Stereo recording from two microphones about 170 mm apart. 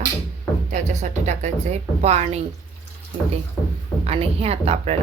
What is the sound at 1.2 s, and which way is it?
Speech, 45° right (ahead or behind).